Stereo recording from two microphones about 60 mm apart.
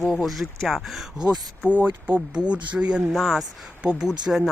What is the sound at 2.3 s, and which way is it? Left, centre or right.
Speech, centre.